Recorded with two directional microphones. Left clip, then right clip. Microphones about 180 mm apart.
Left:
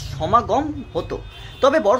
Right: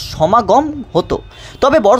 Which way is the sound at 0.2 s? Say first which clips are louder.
Right 7 dB; 40° right (ahead or behind).